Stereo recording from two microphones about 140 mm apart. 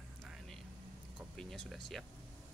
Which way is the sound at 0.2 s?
Centre (ahead or behind).